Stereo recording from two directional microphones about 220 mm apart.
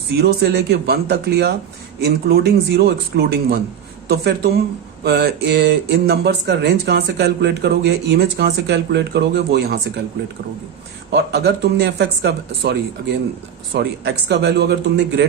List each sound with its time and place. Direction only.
0.2 s speech: 45° right (ahead or behind)
11.1 s speech: 50° right (ahead or behind)